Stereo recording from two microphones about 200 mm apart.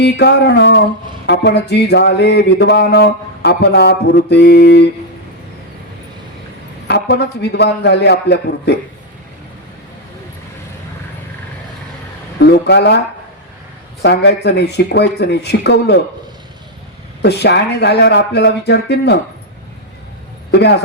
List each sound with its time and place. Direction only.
0.0 s music: 55° left (ahead or behind)
6.8 s music: 55° left (ahead or behind)
12.4 s music: 55° left (ahead or behind)
14.0 s music: 55° left (ahead or behind)
17.2 s music: 55° left (ahead or behind)
20.5 s speech: 55° left (ahead or behind)